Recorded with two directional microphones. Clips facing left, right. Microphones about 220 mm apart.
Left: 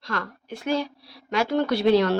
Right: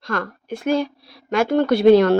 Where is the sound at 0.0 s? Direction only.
50° right (ahead or behind).